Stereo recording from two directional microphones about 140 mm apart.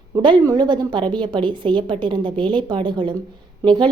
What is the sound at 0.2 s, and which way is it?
A woman's voice, 30° right (ahead or behind).